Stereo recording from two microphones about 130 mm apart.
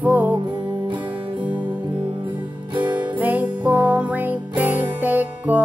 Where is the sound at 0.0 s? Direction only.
10° right (ahead or behind).